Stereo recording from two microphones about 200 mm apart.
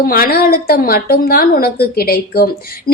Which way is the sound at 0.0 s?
45° left (ahead or behind).